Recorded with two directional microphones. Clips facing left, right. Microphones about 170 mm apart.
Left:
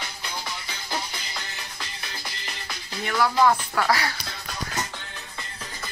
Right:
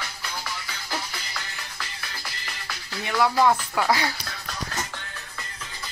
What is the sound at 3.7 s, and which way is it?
Speech, 20° right (ahead or behind).